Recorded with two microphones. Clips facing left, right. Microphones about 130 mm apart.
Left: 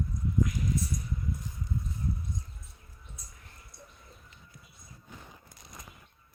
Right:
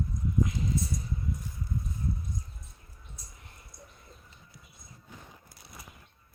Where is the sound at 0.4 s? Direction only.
25° right (ahead or behind).